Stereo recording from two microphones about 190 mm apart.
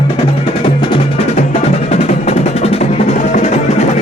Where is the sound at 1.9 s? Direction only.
35° left (ahead or behind).